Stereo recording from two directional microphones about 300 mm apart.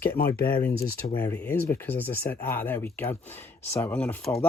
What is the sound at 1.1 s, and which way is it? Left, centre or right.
Speech, centre.